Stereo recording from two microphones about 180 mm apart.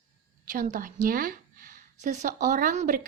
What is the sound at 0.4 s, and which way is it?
A woman's voice, 50° right (ahead or behind).